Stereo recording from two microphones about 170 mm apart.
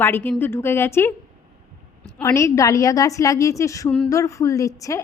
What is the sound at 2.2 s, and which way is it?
A woman's voice, 15° left (ahead or behind).